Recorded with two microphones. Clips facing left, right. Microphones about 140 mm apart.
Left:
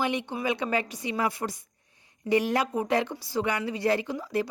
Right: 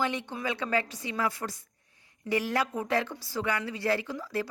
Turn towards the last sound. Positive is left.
turn(degrees=20)  # may be behind; listen again after turning